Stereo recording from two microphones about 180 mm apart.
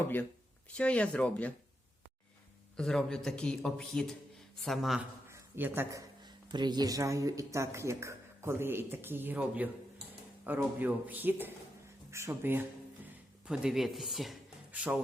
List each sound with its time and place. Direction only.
0.8 s speech: 5° left (ahead or behind)
2.7 s speech: 5° left (ahead or behind)
5.3 s a sound: 10° right (ahead or behind)
6.2 s speech: 25° right (ahead or behind); by 14.9 s centre (ahead or behind)